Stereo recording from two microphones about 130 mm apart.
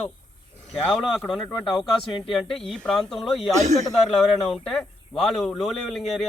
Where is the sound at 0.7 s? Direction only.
5° left (ahead or behind).